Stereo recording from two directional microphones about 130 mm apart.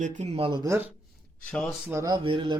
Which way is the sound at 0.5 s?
30° right (ahead or behind).